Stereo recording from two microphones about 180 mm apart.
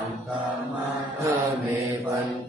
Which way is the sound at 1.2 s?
15° right (ahead or behind).